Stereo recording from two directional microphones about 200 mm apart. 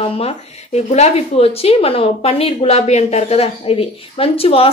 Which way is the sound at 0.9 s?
30° left (ahead or behind).